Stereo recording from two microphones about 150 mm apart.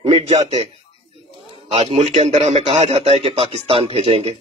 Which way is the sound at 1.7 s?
40° right (ahead or behind).